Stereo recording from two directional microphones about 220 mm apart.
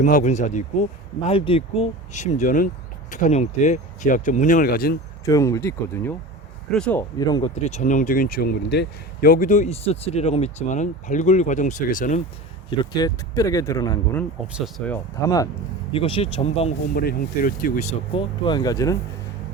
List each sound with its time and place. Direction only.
0.0 s speech: 35° left (ahead or behind)
5.2 s speech: 15° left (ahead or behind)
7.2 s speech: 20° left (ahead or behind); by 12.2 s 35° left (ahead or behind)
12.7 s speech: 20° left (ahead or behind)
15.9 s speech: 25° left (ahead or behind)
16.9 s speech: 45° left (ahead or behind)
18.1 s speech: 20° left (ahead or behind)